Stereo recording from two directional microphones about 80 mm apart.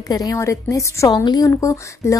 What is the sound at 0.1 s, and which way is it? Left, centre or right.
A woman's voice, left.